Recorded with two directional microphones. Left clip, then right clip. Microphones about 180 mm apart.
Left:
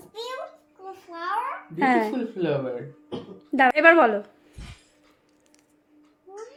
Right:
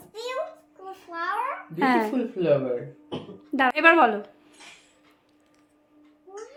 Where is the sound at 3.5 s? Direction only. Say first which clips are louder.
Left 2 dB; 20° left (ahead or behind).